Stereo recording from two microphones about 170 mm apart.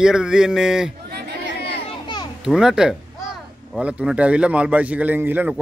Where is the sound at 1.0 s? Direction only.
75° right (ahead or behind).